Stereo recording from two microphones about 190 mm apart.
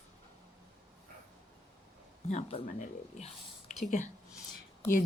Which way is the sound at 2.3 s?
35° left (ahead or behind).